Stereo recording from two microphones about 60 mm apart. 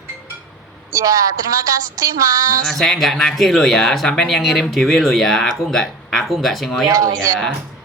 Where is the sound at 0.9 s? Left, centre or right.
Right.